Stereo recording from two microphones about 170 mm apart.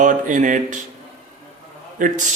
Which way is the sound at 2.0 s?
50° right (ahead or behind).